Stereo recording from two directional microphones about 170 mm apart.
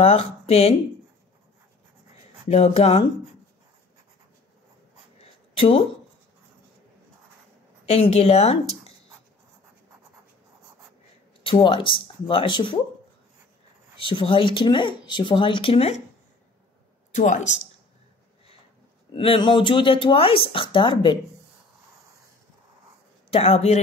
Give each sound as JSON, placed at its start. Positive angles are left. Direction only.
{"t": 0.0, "sound": "speech", "side_deg": 35}
{"t": 2.4, "sound": "speech", "side_deg": 40}
{"t": 5.2, "sound": "a sound", "side_deg": 35}
{"t": 7.8, "sound": "speech", "side_deg": 40}
{"t": 11.4, "sound": "speech", "side_deg": 30}
{"t": 13.9, "sound": "speech", "side_deg": 30}
{"t": 17.1, "sound": "speech", "side_deg": 45}
{"t": 19.1, "sound": "speech", "side_deg": 30}
{"t": 23.3, "sound": "speech", "side_deg": 35}